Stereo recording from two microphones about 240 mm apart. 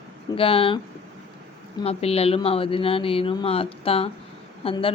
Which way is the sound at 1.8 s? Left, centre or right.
Left.